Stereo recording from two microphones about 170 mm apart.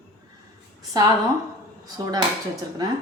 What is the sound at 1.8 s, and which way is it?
Speech, 20° right (ahead or behind).